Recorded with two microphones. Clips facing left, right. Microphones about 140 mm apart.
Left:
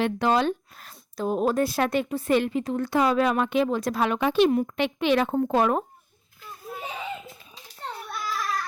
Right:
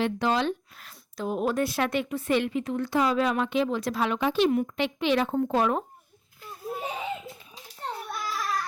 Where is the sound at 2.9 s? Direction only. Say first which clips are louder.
Left 3 dB; 55° left (ahead or behind).